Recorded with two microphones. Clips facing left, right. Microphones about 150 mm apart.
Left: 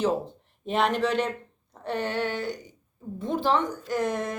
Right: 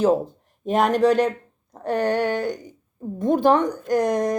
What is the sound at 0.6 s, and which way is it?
Speech, 45° right (ahead or behind).